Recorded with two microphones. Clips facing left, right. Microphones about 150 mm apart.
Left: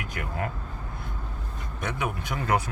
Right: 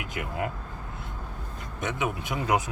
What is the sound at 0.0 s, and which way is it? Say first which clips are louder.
Speech: right 1 dB; 20° right (ahead or behind).